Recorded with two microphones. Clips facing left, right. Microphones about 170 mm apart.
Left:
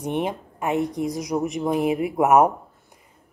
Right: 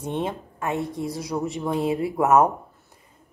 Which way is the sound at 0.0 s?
20° left (ahead or behind).